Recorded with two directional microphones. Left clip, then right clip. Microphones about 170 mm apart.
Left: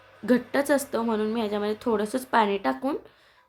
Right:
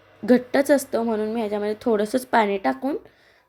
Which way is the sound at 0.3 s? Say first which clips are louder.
Right 5 dB; 20° right (ahead or behind).